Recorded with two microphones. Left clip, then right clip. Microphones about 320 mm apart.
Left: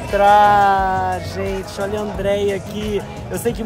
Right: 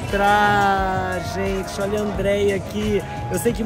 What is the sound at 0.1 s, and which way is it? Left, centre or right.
Speech, centre.